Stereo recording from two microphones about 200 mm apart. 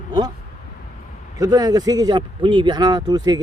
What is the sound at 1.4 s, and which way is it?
Speech, 20° right (ahead or behind).